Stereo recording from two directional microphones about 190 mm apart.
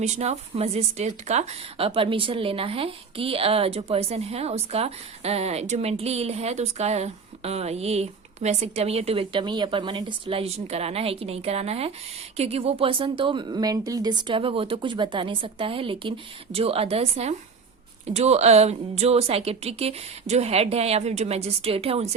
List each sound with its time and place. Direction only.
0.0 s a woman's voice: 35° right (ahead or behind)